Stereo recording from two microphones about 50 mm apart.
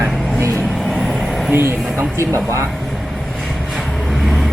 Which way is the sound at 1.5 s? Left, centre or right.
Right.